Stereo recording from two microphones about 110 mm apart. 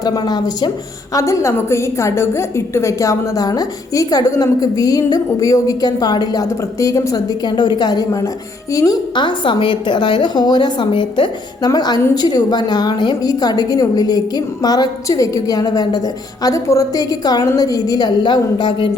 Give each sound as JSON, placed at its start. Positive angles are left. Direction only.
{"t": 0.0, "sound": "a woman's voice", "side_deg": 35}